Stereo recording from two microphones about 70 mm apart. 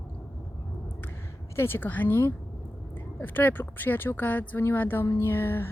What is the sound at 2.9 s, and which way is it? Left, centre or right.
A woman's voice, left.